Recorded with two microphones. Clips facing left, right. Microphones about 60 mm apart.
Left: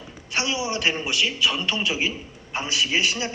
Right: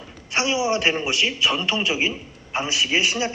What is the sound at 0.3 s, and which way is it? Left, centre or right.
A man's voice, right.